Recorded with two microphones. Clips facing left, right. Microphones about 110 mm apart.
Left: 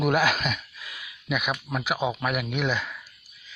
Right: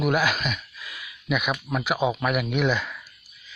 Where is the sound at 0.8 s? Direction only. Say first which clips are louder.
Right 3 dB; 25° left (ahead or behind).